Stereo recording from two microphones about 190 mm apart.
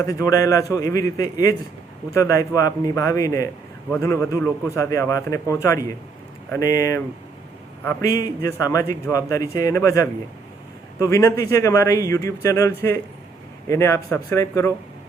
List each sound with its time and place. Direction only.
0.0 s a man's voice: 15° left (ahead or behind)